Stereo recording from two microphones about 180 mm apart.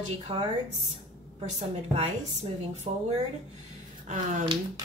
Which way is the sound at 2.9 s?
35° right (ahead or behind).